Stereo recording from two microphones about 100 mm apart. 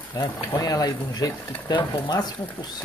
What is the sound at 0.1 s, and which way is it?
Speech, 35° left (ahead or behind).